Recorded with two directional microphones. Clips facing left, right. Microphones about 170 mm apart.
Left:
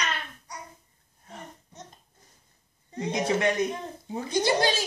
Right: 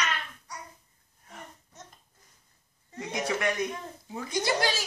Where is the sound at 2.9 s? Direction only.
20° left (ahead or behind).